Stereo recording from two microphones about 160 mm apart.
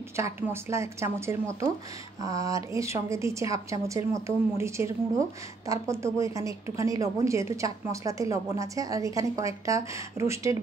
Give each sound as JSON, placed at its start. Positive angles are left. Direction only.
{"t": 0.1, "sound": "a woman's voice", "side_deg": -15}